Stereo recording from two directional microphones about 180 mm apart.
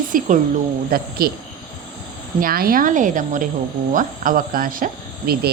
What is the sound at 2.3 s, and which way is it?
Speech, 55° right (ahead or behind).